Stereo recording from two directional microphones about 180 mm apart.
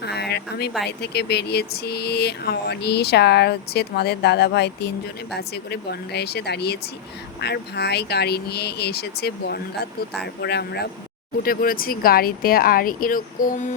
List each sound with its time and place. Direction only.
0.0 s speech: 65° left (ahead or behind)
11.4 s speech: 55° left (ahead or behind)